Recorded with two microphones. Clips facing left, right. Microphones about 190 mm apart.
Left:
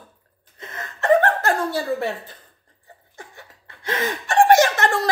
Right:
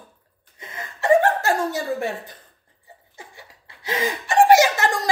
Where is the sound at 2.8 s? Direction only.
10° right (ahead or behind).